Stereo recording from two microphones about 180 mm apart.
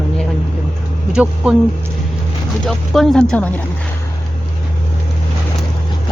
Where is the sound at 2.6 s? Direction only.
Centre (ahead or behind).